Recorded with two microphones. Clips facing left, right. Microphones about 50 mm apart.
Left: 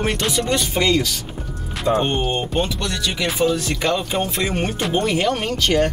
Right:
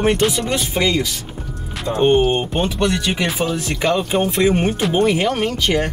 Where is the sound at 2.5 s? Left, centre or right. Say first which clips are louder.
Right 4 dB; right.